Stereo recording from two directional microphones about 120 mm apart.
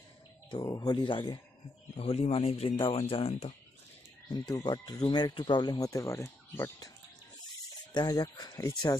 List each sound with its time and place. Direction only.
0.5 s speech: 35° left (ahead or behind)
2.0 s speech: 55° left (ahead or behind)
4.3 s speech: 35° left (ahead or behind)
7.9 s speech: 30° left (ahead or behind)